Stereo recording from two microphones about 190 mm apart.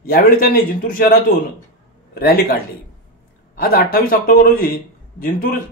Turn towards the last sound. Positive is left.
turn(degrees=50)  # may be behind; listen again after turning